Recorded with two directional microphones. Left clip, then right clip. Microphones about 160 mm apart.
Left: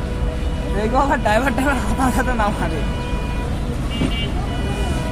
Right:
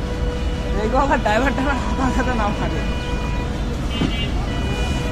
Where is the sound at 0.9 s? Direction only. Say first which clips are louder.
Left 1 dB; 50° left (ahead or behind).